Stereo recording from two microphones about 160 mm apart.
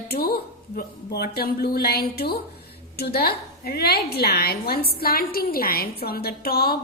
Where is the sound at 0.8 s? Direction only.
80° left.